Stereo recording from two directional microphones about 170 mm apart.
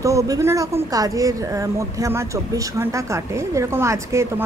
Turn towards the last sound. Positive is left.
turn(degrees=-15)  # may be behind; listen again after turning